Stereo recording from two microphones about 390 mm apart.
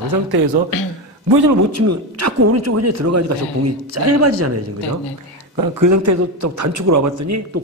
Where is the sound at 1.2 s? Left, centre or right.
Right.